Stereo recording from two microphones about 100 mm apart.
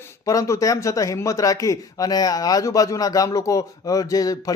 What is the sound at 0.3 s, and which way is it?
Speech, 35° left (ahead or behind).